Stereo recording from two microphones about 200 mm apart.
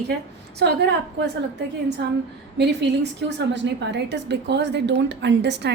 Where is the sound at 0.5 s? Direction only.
55° right (ahead or behind).